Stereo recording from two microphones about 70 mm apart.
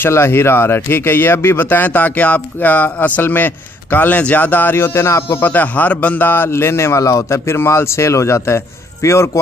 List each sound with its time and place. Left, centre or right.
0.0 s speech: left
5.4 s speech: left
7.0 s a man's voice: left